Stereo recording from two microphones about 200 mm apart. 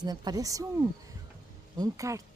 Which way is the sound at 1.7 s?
15° right (ahead or behind).